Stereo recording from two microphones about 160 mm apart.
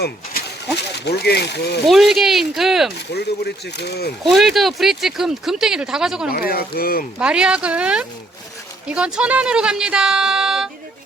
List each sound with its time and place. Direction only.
1.0 s speech: 85° left
1.9 s speech: centre (ahead or behind)
3.1 s speech: 90° left
4.2 s speech: centre (ahead or behind)
6.5 s speech: 70° left (ahead or behind)
7.2 s speech: 5° right (ahead or behind)